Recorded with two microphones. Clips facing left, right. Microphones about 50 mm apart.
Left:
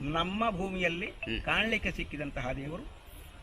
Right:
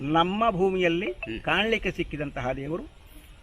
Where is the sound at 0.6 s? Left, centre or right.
Right.